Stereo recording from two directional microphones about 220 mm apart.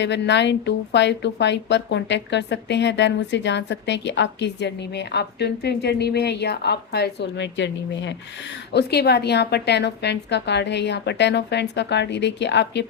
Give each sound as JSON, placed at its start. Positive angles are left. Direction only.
{"t": 0.0, "sound": "a woman's voice", "side_deg": 50}